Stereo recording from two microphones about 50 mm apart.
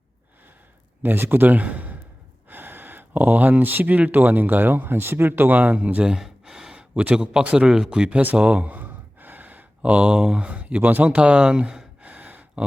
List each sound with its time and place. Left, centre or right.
1.0 s speech: right
2.5 s gasp: right
3.1 s speech: right
6.1 s a sound: centre
7.0 s speech: right
8.4 s a sound: right
10.3 s speech: right
12.0 s gasp: right